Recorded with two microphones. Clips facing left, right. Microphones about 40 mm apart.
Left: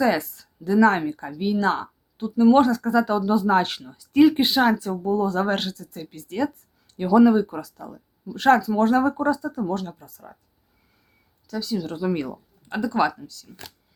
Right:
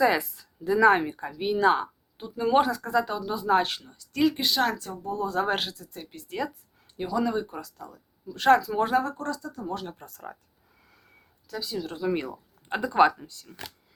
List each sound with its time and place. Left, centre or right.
0.0 s speech: centre
3.8 s speech: centre
4.4 s speech: left
4.8 s speech: centre
7.1 s speech: centre
7.3 s speech: centre
9.1 s speech: centre
10.0 s speech: right
11.4 s speech: centre
12.6 s speech: right